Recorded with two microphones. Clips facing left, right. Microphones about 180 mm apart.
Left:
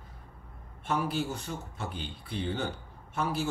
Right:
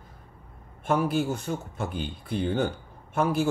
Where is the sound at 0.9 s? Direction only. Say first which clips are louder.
Right 6 dB; 50° right (ahead or behind).